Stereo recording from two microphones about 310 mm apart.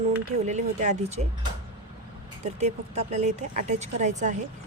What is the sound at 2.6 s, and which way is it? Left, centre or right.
Speech, right.